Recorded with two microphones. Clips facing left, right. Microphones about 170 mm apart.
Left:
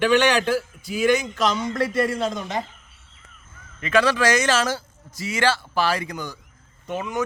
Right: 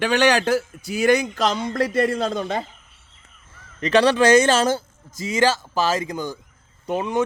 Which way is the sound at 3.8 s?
35° right (ahead or behind).